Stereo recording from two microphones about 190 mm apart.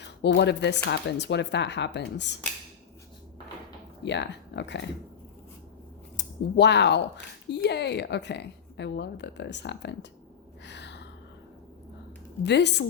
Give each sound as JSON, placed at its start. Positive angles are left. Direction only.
{"t": 0.0, "sound": "a woman's voice", "side_deg": 65}
{"t": 4.0, "sound": "a woman's voice", "side_deg": 65}
{"t": 6.1, "sound": "a woman's voice", "side_deg": 65}
{"t": 10.6, "sound": "a sound", "side_deg": 65}
{"t": 12.4, "sound": "a woman's voice", "side_deg": 65}